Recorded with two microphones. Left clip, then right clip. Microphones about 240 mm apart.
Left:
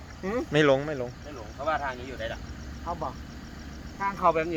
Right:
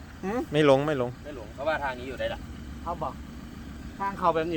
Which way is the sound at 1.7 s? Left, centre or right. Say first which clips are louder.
Even; right.